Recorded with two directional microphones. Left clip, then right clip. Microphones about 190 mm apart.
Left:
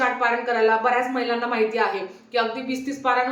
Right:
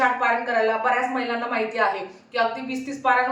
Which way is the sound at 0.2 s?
15° left (ahead or behind).